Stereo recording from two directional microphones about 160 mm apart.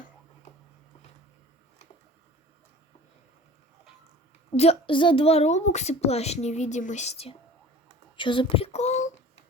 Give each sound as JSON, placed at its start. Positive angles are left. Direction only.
{"t": 4.5, "sound": "a woman's voice", "side_deg": 40}